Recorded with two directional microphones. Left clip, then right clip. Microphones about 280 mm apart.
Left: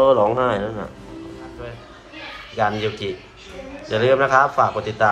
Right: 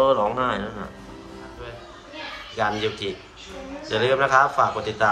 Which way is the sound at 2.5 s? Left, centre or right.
Centre.